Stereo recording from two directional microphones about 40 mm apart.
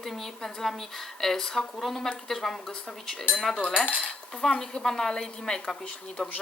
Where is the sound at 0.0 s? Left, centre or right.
Centre.